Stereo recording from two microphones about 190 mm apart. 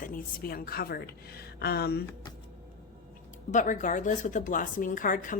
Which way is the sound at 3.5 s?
40° left (ahead or behind).